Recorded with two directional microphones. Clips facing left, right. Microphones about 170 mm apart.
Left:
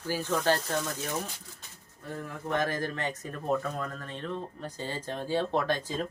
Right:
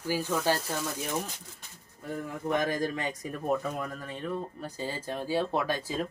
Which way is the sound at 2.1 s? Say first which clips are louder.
Right 1 dB; 15° right (ahead or behind).